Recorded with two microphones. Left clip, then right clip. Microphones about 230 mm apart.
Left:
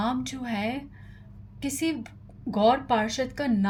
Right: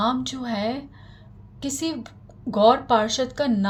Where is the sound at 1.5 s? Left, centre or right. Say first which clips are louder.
Right 1 dB; left.